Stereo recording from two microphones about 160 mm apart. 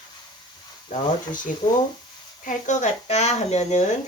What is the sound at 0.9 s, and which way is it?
Speech, 50° left (ahead or behind).